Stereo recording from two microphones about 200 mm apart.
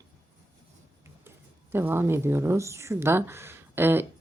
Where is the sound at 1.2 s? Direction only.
10° right (ahead or behind).